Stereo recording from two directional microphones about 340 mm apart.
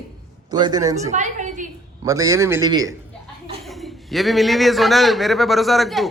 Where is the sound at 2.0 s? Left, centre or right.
Centre.